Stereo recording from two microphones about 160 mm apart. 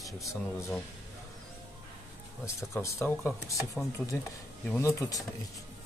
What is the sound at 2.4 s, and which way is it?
Speech, 20° left (ahead or behind).